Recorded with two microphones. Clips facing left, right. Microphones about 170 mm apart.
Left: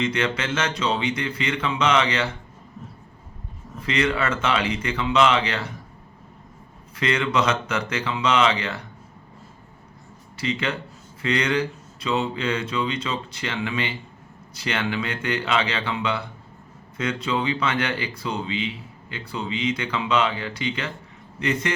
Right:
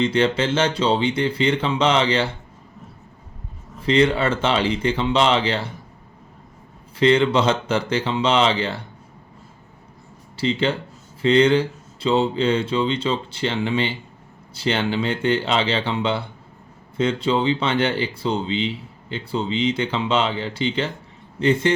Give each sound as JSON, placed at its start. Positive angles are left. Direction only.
{"t": 0.0, "sound": "speech", "side_deg": -30}
{"t": 3.8, "sound": "speech", "side_deg": -30}
{"t": 6.9, "sound": "speech", "side_deg": -30}
{"t": 10.3, "sound": "a man's voice", "side_deg": -30}